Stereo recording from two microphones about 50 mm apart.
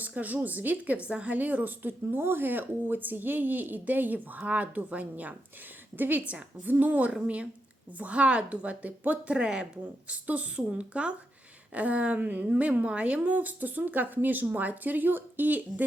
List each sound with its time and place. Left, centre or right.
0.0 s a woman's voice: right